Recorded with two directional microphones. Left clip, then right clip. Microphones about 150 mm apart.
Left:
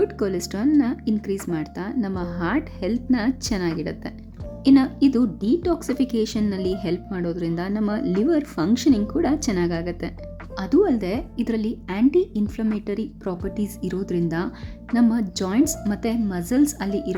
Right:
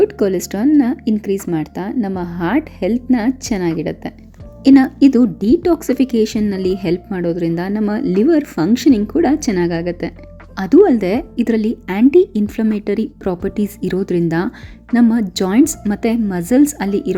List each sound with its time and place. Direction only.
0.0 s a woman's voice: 25° right (ahead or behind)